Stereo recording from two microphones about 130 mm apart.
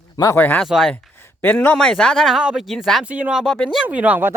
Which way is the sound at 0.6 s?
Centre (ahead or behind).